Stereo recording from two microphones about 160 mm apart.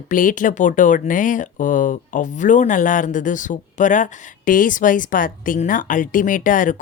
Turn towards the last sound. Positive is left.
turn(degrees=55)  # may be behind; listen again after turning